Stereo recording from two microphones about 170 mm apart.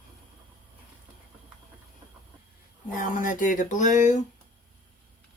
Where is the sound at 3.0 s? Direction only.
50° left (ahead or behind).